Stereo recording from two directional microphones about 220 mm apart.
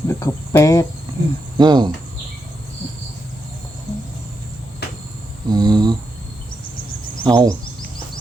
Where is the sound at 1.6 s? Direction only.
20° right (ahead or behind).